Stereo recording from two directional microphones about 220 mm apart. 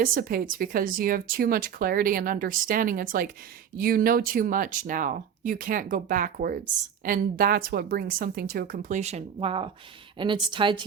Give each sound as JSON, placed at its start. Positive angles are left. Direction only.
{"t": 0.0, "sound": "a woman's voice", "side_deg": -40}